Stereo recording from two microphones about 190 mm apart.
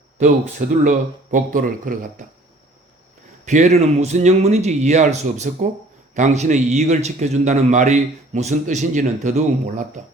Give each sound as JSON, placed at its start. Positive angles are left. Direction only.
{"t": 0.9, "sound": "speech", "side_deg": -45}
{"t": 3.4, "sound": "a man's voice", "side_deg": -40}